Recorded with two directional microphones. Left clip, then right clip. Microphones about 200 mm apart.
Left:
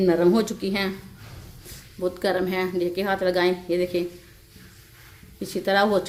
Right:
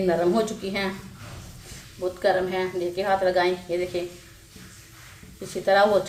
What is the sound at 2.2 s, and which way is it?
Speech, 50° left (ahead or behind).